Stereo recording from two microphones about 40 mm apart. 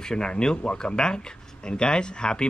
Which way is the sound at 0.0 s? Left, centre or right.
Centre.